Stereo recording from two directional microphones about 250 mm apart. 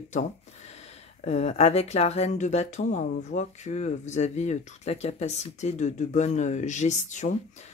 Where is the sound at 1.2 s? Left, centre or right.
Left.